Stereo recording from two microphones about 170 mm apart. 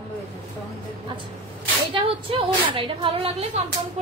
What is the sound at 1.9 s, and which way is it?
A woman's voice, 30° right (ahead or behind).